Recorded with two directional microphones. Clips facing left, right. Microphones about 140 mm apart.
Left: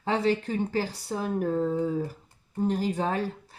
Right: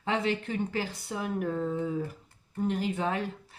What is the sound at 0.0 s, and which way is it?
Speech, 35° left (ahead or behind).